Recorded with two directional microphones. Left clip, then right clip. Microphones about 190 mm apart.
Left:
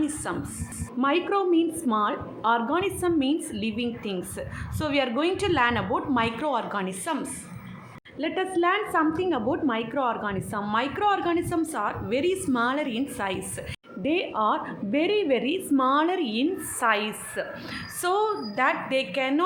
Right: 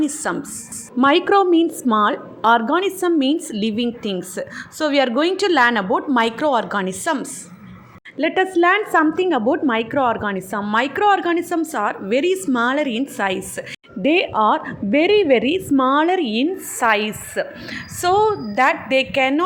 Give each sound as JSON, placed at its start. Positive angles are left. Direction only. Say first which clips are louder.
{"t": 0.0, "sound": "a woman's voice", "louder": "right 7 dB", "side_deg": -40}